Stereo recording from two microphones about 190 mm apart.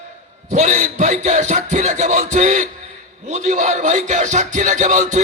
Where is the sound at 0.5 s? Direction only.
40° right (ahead or behind).